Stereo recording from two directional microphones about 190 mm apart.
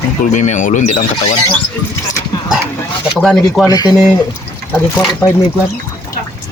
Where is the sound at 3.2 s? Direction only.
Centre (ahead or behind).